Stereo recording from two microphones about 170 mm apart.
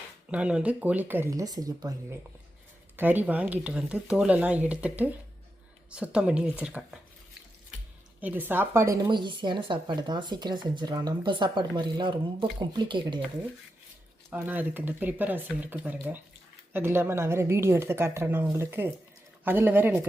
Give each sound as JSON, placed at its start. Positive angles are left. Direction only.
{"t": 0.3, "sound": "speech", "side_deg": -5}
{"t": 2.9, "sound": "speech", "side_deg": -10}
{"t": 8.2, "sound": "speech", "side_deg": -10}
{"t": 14.3, "sound": "speech", "side_deg": -10}